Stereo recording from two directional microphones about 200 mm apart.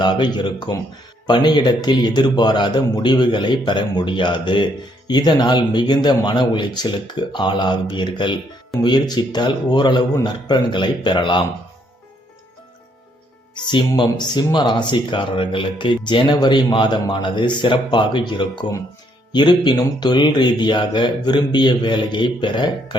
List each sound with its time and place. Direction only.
0.0 s a man's voice: 20° left (ahead or behind)
13.5 s a man's voice: 20° left (ahead or behind)